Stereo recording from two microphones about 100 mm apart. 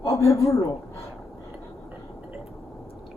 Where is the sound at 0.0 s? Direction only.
30° left (ahead or behind).